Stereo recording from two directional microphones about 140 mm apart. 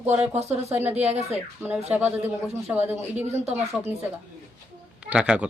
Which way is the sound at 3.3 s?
50° right (ahead or behind).